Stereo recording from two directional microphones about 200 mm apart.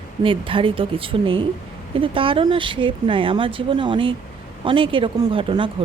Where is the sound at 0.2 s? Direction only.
25° right (ahead or behind).